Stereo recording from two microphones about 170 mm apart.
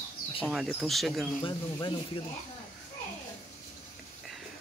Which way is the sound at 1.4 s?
30° left (ahead or behind).